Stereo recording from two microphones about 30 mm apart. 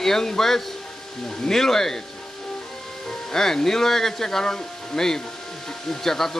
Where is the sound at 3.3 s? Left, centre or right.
Centre.